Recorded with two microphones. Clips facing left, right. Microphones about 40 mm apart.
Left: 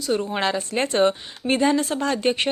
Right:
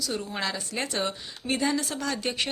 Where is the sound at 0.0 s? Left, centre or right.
Left.